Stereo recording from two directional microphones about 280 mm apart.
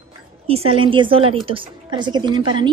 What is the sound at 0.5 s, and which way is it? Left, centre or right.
A woman's voice, centre.